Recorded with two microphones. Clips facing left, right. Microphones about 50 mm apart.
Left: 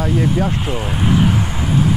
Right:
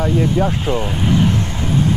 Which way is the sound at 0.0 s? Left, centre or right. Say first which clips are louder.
Right 1 dB; centre.